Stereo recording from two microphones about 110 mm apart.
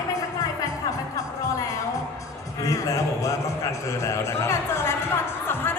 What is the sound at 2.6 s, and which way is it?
A man's voice, 30° left (ahead or behind).